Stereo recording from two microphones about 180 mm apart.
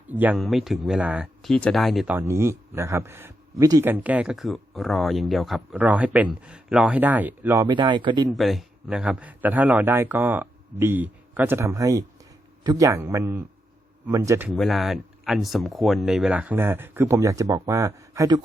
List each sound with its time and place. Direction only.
0.1 s speech: 10° right (ahead or behind)
2.1 s a man's voice: 15° right (ahead or behind)
8.3 s a man's voice: centre (ahead or behind)
14.5 s a man's voice: centre (ahead or behind); by 18.3 s 15° right (ahead or behind)